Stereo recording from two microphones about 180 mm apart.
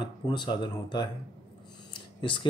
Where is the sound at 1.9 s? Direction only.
25° left (ahead or behind).